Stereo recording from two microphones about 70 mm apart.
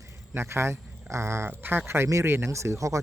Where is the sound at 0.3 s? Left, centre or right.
Right.